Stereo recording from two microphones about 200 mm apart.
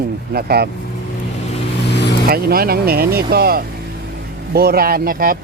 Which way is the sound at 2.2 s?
50° right (ahead or behind).